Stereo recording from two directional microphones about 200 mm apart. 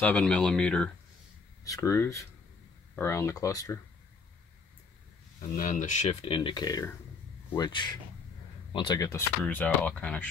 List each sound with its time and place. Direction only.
0.0 s speech: 5° left (ahead or behind)
1.6 s speech: 15° left (ahead or behind)
5.6 s speech: 40° left (ahead or behind); by 9.2 s 20° left (ahead or behind)
9.4 s speech: 5° left (ahead or behind)